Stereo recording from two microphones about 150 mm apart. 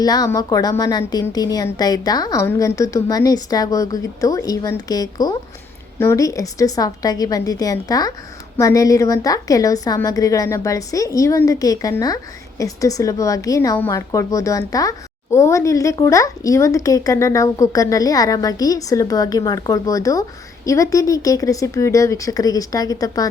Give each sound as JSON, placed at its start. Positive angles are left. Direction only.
{"t": 0.0, "sound": "a woman's voice", "side_deg": 25}